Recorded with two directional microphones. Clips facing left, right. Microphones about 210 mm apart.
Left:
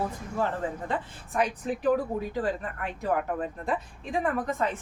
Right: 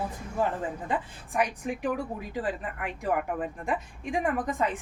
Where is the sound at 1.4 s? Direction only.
10° right (ahead or behind).